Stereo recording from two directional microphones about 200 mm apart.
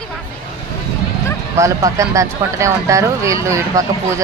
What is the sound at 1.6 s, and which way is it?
Speech, 15° right (ahead or behind).